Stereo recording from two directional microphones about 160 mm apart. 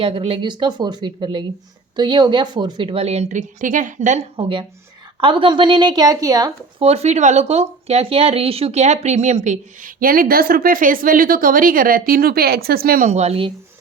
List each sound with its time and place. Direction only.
0.0 s a woman's voice: 35° right (ahead or behind)
4.4 s a woman's voice: 35° right (ahead or behind)
6.7 s speech: 40° right (ahead or behind); by 13.1 s 70° right (ahead or behind)
13.1 s a woman's voice: 40° right (ahead or behind)